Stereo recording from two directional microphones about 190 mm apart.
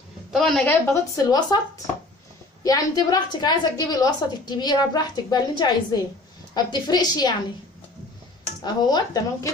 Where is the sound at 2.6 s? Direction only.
20° left (ahead or behind).